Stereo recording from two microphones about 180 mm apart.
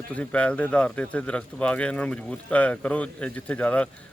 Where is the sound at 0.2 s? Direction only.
5° left (ahead or behind).